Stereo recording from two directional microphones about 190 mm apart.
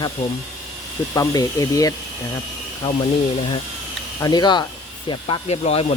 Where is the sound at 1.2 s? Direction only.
20° left (ahead or behind).